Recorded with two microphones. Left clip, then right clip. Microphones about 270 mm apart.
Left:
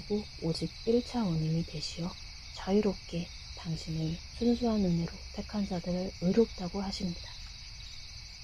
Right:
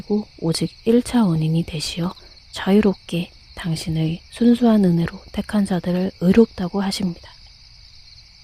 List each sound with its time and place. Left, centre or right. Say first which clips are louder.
0.4 s speech: right 12 dB; right